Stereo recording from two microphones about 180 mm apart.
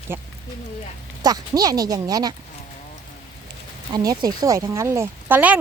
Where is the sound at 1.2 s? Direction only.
20° right (ahead or behind).